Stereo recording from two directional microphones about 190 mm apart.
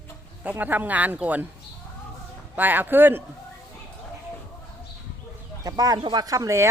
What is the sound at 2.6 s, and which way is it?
Speech, 10° right (ahead or behind).